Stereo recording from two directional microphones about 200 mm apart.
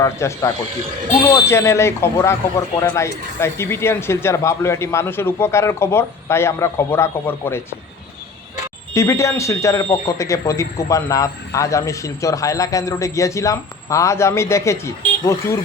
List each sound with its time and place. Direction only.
0.0 s speech: 15° left (ahead or behind)
8.9 s speech: 15° left (ahead or behind)